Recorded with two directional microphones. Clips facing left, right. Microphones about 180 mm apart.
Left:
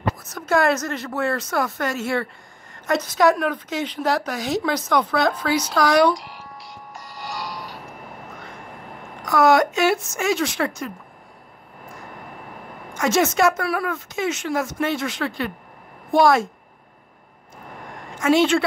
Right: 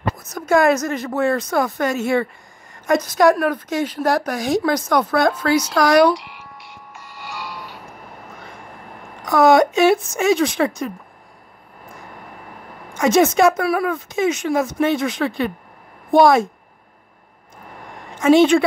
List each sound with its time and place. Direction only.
0.3 s a woman's voice: 15° right (ahead or behind)
6.1 s music: 40° left (ahead or behind)
9.2 s speech: 20° right (ahead or behind)
12.9 s speech: 15° right (ahead or behind)
18.2 s speech: 20° right (ahead or behind)